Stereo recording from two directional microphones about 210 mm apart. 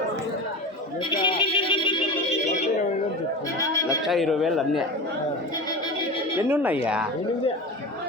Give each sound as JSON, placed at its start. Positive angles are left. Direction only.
{"t": 1.1, "sound": "music", "side_deg": 25}
{"t": 3.6, "sound": "a sound", "side_deg": 15}
{"t": 4.0, "sound": "speech", "side_deg": 0}
{"t": 6.3, "sound": "speech", "side_deg": -10}